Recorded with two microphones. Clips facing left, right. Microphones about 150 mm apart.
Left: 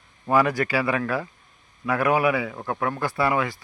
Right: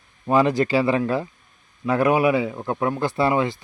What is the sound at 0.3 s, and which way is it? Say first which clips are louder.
Speech: right 3 dB; 20° right (ahead or behind).